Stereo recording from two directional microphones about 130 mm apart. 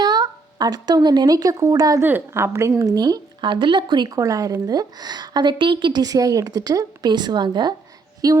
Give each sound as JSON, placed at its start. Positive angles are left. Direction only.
{"t": 0.0, "sound": "speech", "side_deg": -30}
{"t": 2.0, "sound": "a woman's voice", "side_deg": -15}